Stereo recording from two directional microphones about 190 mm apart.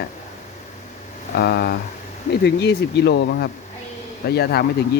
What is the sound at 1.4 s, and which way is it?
Speech, 55° left (ahead or behind).